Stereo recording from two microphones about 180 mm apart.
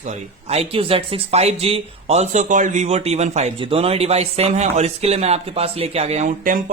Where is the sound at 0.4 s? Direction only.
35° right (ahead or behind).